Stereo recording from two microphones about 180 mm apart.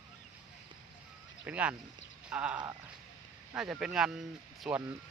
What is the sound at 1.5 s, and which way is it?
Speech, 5° right (ahead or behind).